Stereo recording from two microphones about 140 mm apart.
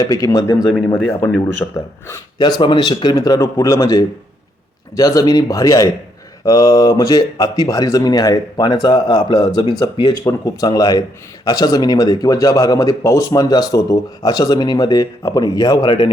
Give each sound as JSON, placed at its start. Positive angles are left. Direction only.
{"t": 0.0, "sound": "speech", "side_deg": 25}
{"t": 2.4, "sound": "speech", "side_deg": 35}